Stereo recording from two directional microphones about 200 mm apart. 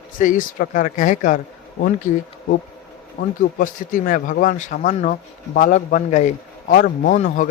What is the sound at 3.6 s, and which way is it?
A man's voice, 45° left (ahead or behind).